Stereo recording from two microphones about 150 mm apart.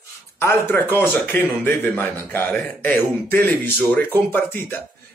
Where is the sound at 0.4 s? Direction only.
15° left (ahead or behind).